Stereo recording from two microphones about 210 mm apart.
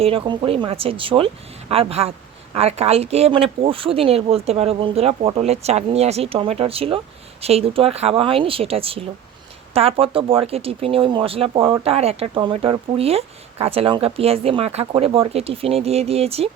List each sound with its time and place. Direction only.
0.0 s speech: 25° right (ahead or behind)